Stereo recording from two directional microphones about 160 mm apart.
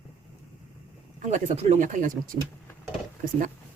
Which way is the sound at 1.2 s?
45° right (ahead or behind).